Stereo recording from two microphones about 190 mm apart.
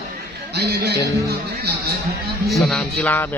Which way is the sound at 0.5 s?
60° right (ahead or behind).